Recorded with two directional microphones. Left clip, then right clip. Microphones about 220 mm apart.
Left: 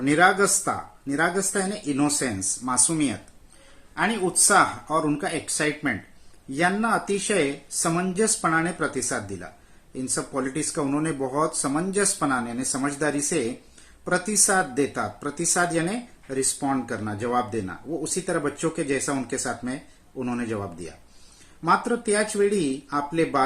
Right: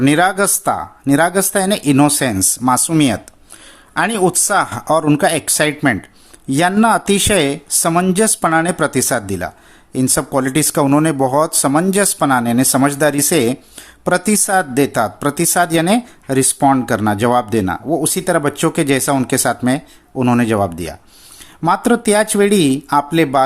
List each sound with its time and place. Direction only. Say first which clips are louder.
0.0 s speech: right 6 dB; 50° right (ahead or behind)